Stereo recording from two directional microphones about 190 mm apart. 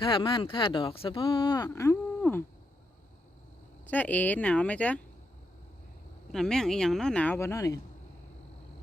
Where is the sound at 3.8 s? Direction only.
10° left (ahead or behind).